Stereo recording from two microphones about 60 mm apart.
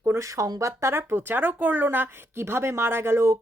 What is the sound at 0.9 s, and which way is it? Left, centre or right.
A woman's voice, right.